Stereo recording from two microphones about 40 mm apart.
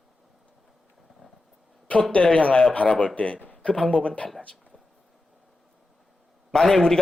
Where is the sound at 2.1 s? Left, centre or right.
Left.